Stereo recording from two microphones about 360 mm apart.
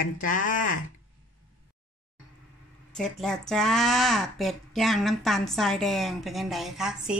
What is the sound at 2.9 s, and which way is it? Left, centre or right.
Speech, centre.